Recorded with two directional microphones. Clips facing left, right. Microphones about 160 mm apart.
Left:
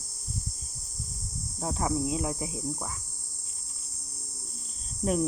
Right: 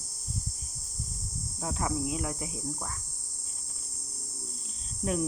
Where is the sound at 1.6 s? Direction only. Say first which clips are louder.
Left 3 dB; 25° left (ahead or behind).